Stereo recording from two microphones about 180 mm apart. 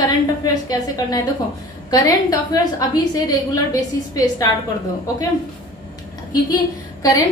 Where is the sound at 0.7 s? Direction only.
20° left (ahead or behind).